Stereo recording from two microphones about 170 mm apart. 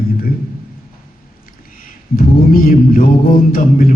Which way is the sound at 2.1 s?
60° left (ahead or behind).